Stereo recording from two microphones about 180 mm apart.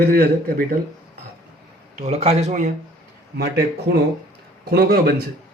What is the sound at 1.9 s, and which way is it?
Speech, 35° right (ahead or behind).